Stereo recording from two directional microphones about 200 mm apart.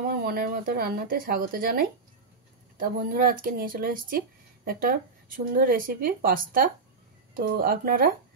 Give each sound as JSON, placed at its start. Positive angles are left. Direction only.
{"t": 0.0, "sound": "speech", "side_deg": -50}